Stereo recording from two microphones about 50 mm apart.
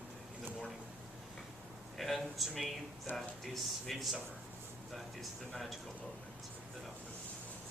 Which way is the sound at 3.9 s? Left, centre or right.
Centre.